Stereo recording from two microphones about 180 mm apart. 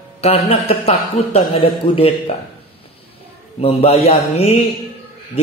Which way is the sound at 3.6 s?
35° left (ahead or behind).